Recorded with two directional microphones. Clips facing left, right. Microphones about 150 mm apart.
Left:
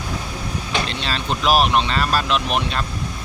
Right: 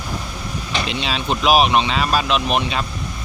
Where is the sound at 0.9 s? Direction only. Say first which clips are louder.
Right 2 dB; 10° right (ahead or behind).